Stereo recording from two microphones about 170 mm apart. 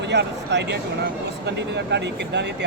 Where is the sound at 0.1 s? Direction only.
90° right.